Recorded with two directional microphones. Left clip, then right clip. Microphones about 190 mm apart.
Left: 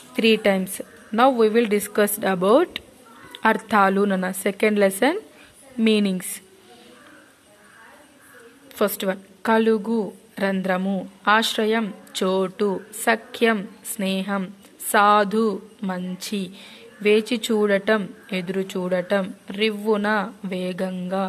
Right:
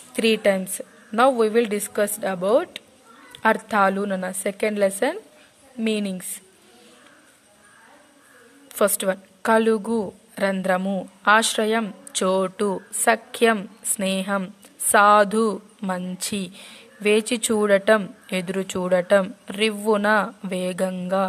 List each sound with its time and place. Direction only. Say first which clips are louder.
0.1 s a woman's voice: left 1 dB; 20° right (ahead or behind)
8.7 s a woman's voice: right 2 dB; 25° right (ahead or behind)